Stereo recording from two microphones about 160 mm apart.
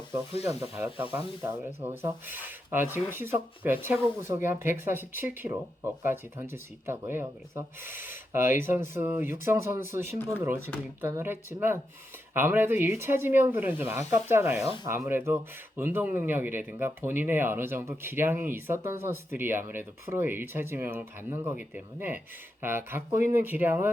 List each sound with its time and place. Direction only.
0.4 s speech: 15° right (ahead or behind)